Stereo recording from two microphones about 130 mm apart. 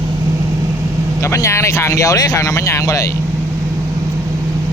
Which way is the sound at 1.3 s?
20° left (ahead or behind).